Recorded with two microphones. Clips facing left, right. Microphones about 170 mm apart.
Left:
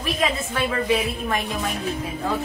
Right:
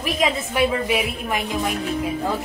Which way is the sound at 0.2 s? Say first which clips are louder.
Right 5 dB; 15° right (ahead or behind).